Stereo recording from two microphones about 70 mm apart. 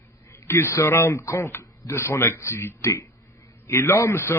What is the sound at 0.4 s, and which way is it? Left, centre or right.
A man's voice, left.